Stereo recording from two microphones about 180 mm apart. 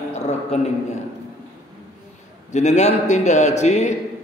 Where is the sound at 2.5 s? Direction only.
40° left (ahead or behind).